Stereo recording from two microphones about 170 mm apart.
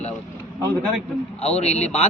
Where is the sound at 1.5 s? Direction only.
40° left (ahead or behind).